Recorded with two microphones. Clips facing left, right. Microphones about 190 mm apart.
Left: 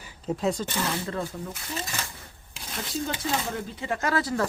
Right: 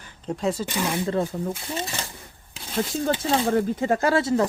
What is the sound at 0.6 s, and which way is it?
Speech, 15° right (ahead or behind).